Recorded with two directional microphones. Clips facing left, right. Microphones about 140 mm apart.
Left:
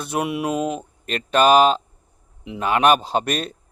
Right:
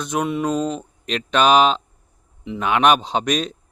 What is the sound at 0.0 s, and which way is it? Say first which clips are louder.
Speech: right 2 dB; 5° left (ahead or behind).